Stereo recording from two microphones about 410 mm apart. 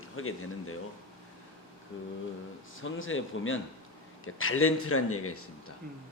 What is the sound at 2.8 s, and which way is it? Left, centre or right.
A man's voice, left.